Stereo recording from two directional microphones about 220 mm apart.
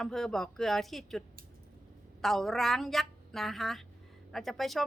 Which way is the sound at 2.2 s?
Centre (ahead or behind).